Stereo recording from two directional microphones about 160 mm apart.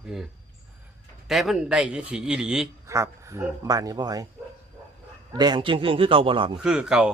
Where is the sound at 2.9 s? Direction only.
20° right (ahead or behind).